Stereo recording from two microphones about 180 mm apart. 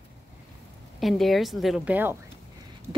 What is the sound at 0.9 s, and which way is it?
Speech, centre (ahead or behind).